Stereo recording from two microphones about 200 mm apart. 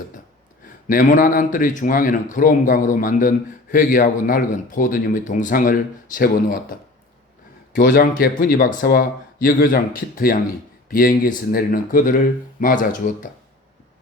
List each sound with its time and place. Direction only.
0.9 s a man's voice: 45° left (ahead or behind)
7.8 s a man's voice: 50° left (ahead or behind)